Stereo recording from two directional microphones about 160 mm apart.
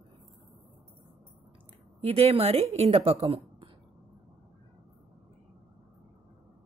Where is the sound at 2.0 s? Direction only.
40° right (ahead or behind).